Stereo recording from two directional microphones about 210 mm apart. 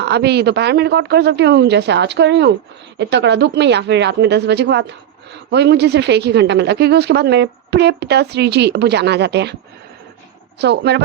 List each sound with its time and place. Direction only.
0.0 s speech: 50° right (ahead or behind)
10.6 s speech: 55° right (ahead or behind)